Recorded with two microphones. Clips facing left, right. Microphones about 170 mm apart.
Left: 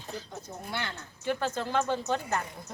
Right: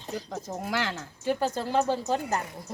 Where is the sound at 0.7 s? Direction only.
90° right.